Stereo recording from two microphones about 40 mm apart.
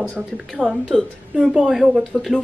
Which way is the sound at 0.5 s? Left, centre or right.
Right.